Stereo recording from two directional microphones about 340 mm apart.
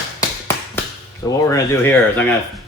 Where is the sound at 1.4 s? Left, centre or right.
Centre.